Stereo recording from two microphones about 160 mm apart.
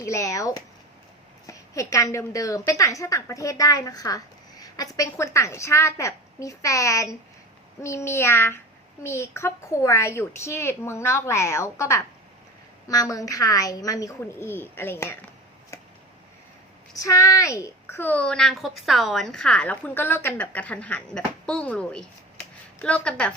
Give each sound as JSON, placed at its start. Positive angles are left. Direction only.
{"t": 0.0, "sound": "a woman's voice", "side_deg": 20}
{"t": 16.9, "sound": "a woman's voice", "side_deg": 20}